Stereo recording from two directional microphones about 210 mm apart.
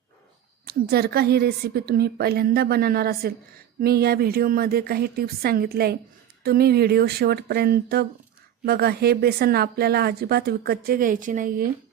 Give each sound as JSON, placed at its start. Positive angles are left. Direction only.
{"t": 0.6, "sound": "speech", "side_deg": -50}